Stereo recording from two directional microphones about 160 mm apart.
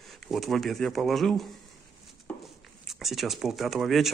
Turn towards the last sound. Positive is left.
turn(degrees=0)  # may be behind; listen again after turning